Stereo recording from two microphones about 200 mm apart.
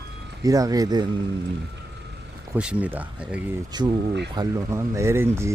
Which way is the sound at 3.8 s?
20° right (ahead or behind).